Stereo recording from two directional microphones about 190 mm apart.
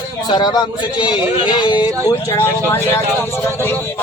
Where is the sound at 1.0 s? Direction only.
25° left (ahead or behind).